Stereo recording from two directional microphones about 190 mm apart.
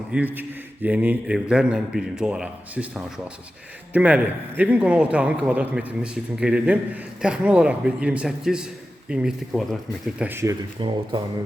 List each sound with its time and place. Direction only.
0.1 s a man's voice: 10° right (ahead or behind); by 11.2 s 25° right (ahead or behind)